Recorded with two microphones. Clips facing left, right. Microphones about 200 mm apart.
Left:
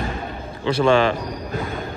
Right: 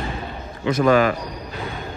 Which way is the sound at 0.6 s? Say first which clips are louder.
Even; 30° left (ahead or behind).